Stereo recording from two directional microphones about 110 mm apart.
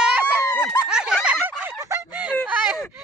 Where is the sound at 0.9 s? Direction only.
5° right (ahead or behind).